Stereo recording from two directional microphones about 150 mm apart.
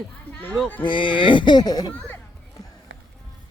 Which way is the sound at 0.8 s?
35° left (ahead or behind).